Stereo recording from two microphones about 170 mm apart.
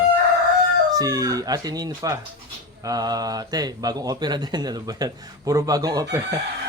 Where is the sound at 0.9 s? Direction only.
20° right (ahead or behind).